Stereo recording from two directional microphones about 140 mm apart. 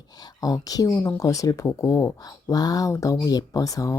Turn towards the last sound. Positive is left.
turn(degrees=25)  # may be behind; listen again after turning